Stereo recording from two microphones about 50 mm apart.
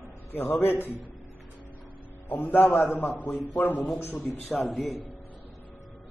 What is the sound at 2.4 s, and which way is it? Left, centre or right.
Speech, left.